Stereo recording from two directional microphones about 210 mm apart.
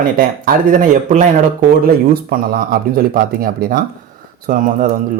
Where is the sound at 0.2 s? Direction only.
40° right (ahead or behind).